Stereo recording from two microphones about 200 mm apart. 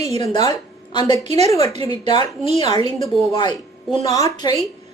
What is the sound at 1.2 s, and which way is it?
Speech, 30° right (ahead or behind).